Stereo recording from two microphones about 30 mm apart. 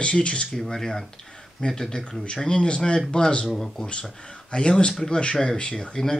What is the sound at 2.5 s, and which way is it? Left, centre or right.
Speech, left.